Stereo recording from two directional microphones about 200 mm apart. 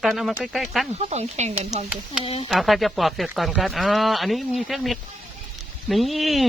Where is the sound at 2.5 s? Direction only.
Centre (ahead or behind).